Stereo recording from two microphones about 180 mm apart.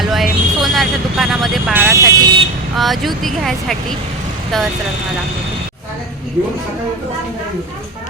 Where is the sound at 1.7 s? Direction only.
10° right (ahead or behind).